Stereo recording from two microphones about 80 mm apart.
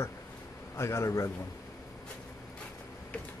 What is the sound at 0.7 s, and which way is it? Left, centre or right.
Speech, left.